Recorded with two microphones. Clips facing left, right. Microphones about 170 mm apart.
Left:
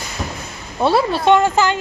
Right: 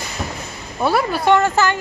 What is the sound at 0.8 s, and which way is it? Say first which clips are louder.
Speech: left 2 dB; 25° left (ahead or behind).